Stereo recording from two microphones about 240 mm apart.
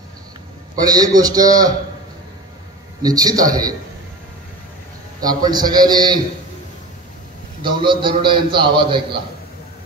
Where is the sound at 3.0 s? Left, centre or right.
Centre.